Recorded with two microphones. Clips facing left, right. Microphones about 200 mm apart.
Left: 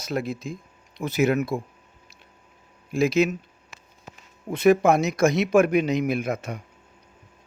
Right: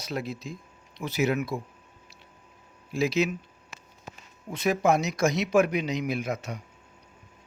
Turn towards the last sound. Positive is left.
turn(degrees=55)  # may be behind; listen again after turning